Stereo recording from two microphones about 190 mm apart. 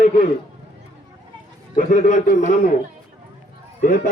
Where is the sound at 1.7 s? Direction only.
45° left (ahead or behind).